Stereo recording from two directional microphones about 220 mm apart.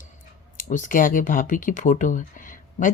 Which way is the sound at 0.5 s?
35° left (ahead or behind).